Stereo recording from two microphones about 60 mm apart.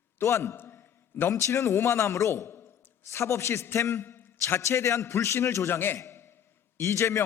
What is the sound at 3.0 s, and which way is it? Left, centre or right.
A man's voice, left.